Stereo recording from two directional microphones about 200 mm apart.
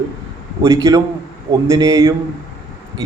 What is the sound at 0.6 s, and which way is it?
A man's voice, 15° right (ahead or behind).